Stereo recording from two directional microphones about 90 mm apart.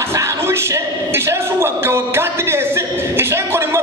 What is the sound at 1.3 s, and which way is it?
Music, 30° right (ahead or behind).